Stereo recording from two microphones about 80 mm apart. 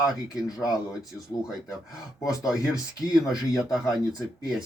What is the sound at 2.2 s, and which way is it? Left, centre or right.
Speech, left.